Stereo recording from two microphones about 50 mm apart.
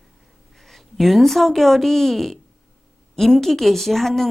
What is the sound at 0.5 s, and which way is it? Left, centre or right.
A woman's voice, centre.